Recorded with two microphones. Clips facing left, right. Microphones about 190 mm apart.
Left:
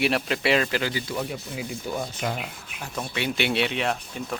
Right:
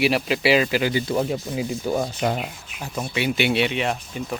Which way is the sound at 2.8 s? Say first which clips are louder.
Right 4 dB; 5° right (ahead or behind).